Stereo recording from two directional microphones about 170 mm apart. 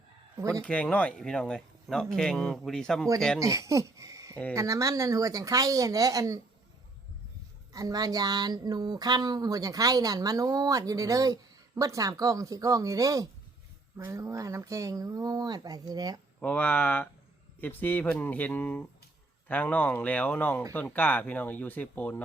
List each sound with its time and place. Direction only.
0.3 s a man's voice: 20° right (ahead or behind)
0.6 s speech: 5° left (ahead or behind)
3.4 s speech: 20° right (ahead or behind)
7.7 s speech: 20° right (ahead or behind)
16.4 s speech: 10° left (ahead or behind)